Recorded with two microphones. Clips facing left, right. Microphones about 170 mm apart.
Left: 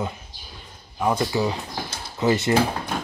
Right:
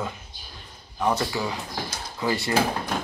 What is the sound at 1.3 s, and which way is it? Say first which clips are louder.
Speech: left 5 dB; 20° left (ahead or behind).